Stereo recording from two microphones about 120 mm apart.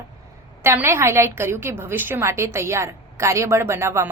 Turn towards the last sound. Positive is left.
turn(degrees=-20)  # may be behind; listen again after turning